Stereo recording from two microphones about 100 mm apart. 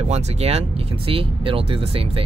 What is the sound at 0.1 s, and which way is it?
Speech, 90° right.